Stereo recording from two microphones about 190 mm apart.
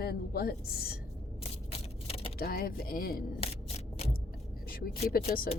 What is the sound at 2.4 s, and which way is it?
Speech, 50° left (ahead or behind).